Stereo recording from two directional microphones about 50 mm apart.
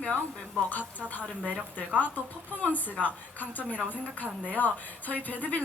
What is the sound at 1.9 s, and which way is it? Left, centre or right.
A woman's voice, left.